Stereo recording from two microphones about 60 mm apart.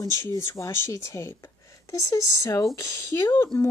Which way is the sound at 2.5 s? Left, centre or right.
Left.